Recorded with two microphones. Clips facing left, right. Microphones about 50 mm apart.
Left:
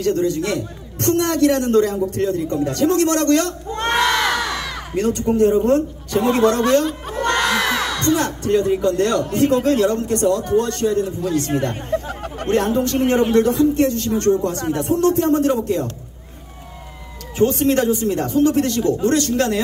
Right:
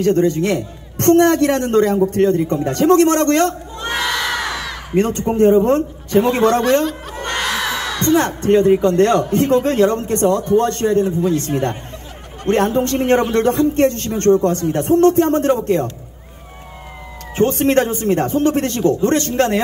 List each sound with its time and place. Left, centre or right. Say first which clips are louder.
0.0 s speech: right 4 dB; right
3.9 s crowd: left 2 dB; centre
4.9 s a man's voice: right 2 dB; right
7.2 s a sound: left 5 dB; centre
7.4 s crowd: left 2 dB; centre
8.2 s speech: right 4 dB; right
12.4 s speech: right 2 dB; right
17.4 s speech: right 2 dB; right